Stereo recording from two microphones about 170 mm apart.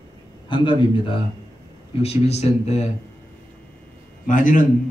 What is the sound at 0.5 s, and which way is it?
Speech, 30° left (ahead or behind).